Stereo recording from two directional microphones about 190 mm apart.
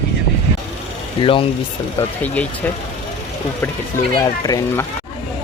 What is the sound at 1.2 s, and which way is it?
Speech, 30° left (ahead or behind).